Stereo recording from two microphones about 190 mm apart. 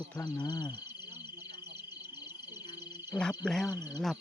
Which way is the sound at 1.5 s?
60° right (ahead or behind).